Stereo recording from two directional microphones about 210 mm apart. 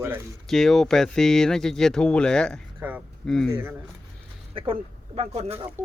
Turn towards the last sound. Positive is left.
turn(degrees=-30)  # may be behind; listen again after turning